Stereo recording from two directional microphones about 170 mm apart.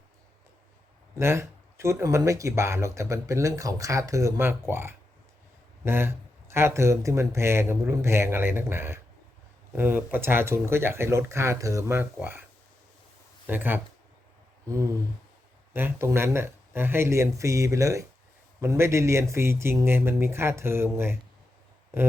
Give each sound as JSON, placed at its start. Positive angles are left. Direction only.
{"t": 1.2, "sound": "speech", "side_deg": -15}
{"t": 13.5, "sound": "speech", "side_deg": -10}
{"t": 14.7, "sound": "a sound", "side_deg": -20}
{"t": 15.7, "sound": "speech", "side_deg": -15}